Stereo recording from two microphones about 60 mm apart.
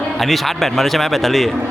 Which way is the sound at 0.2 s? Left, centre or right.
Centre.